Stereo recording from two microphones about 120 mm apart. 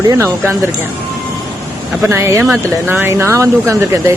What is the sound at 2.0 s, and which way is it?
Speech, 20° right (ahead or behind).